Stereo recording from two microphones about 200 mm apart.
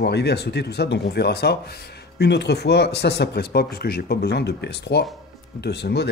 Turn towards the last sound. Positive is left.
turn(degrees=55)  # may be behind; listen again after turning